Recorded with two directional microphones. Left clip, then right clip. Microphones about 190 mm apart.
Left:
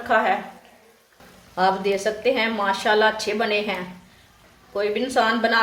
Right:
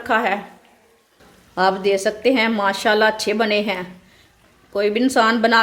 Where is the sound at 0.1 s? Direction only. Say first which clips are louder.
Right 1 dB; 55° right (ahead or behind).